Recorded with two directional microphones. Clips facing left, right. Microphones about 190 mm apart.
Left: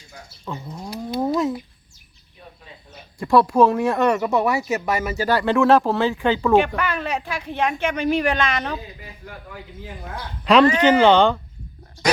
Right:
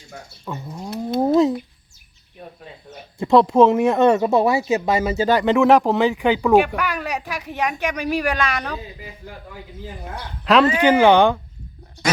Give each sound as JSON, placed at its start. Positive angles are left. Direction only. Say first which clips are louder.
{"t": 0.4, "sound": "speech", "louder": "right 1 dB", "side_deg": -5}
{"t": 1.2, "sound": "a sound", "louder": "right 5 dB", "side_deg": -30}
{"t": 3.2, "sound": "a woman's voice", "louder": "right 2 dB", "side_deg": -20}
{"t": 10.4, "sound": "speech", "louder": "left 1 dB", "side_deg": 0}